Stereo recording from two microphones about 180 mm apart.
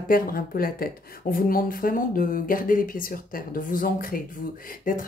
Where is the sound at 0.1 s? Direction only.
55° left (ahead or behind).